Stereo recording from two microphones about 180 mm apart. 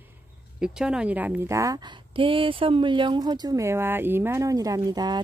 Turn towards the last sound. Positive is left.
turn(degrees=-20)  # may be behind; listen again after turning